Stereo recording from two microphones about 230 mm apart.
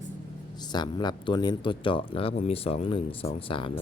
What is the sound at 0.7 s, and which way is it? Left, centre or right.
Speech, centre.